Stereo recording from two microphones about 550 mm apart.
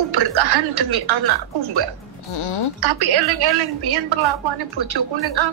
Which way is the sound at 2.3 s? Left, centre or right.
Left.